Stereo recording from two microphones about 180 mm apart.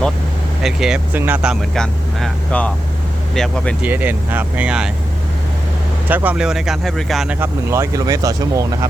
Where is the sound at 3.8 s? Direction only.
10° right (ahead or behind).